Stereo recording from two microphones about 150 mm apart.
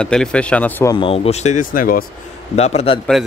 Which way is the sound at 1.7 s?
70° left (ahead or behind).